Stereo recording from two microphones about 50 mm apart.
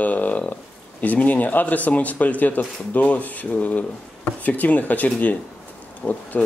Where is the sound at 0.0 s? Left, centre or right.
Left.